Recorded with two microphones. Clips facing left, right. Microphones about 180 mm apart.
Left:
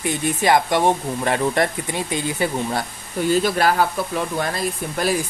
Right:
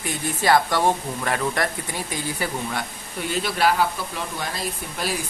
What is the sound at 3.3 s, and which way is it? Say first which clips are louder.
Speech: left 4 dB; 40° left (ahead or behind).